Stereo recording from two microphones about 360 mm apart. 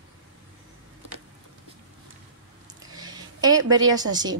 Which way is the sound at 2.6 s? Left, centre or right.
Centre.